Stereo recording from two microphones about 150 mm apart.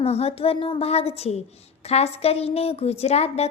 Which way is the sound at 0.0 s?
45° left (ahead or behind).